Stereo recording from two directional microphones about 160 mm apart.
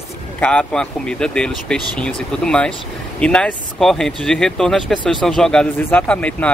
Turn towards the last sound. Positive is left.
turn(degrees=5)  # may be behind; listen again after turning